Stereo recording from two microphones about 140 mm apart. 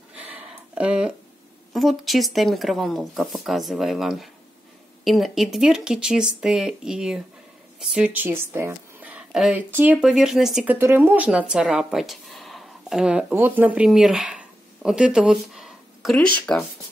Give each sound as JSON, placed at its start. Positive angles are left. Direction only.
{"t": 0.1, "sound": "a sound", "side_deg": -10}
{"t": 1.7, "sound": "speech", "side_deg": 0}
{"t": 10.8, "sound": "speech", "side_deg": -15}